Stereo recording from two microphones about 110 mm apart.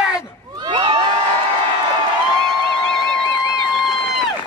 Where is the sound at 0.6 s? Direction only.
45° right (ahead or behind).